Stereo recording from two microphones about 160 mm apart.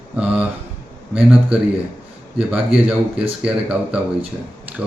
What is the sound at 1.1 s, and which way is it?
Speech, 5° right (ahead or behind).